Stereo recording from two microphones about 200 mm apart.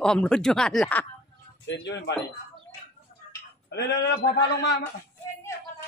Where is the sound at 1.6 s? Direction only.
60° left (ahead or behind).